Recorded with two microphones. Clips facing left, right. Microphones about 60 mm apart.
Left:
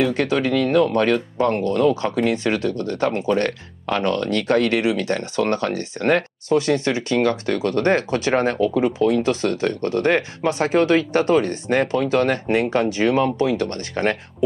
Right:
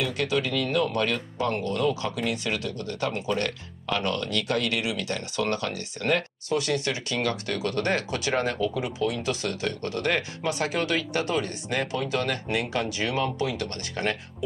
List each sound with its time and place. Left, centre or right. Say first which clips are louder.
0.0 s speech: left 7 dB; left